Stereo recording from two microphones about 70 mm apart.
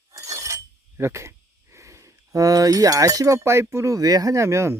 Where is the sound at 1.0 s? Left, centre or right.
Right.